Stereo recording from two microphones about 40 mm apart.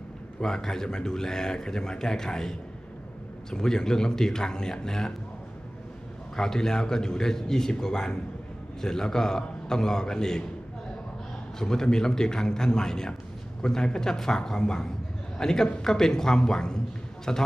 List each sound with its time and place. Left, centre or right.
0.4 s speech: centre
6.3 s speech: centre
11.6 s a man's voice: centre